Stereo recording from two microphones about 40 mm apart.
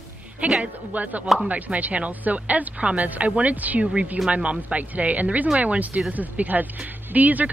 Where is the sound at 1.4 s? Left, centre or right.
Right.